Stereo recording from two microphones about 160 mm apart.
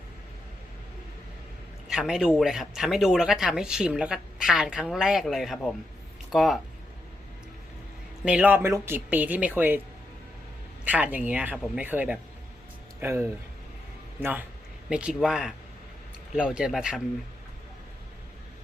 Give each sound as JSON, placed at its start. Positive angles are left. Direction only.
{"t": 1.9, "sound": "speech", "side_deg": -5}
{"t": 8.2, "sound": "speech", "side_deg": -5}
{"t": 10.8, "sound": "speech", "side_deg": -10}